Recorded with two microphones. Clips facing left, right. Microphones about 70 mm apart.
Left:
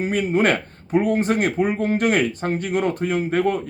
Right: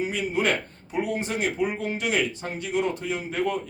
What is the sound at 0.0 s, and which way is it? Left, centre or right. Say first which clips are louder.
Speech: left 6 dB; left.